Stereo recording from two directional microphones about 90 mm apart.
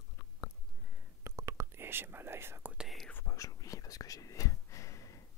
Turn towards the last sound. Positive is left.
turn(degrees=35)  # may be behind; listen again after turning